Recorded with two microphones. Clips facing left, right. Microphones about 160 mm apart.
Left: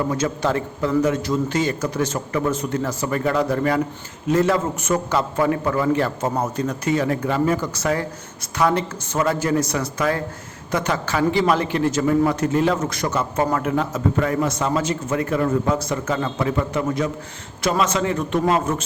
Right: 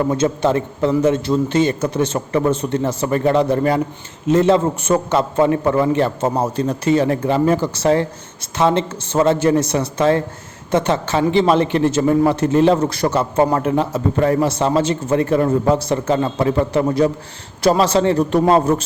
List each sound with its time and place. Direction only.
0.1 s a man's voice: 25° right (ahead or behind)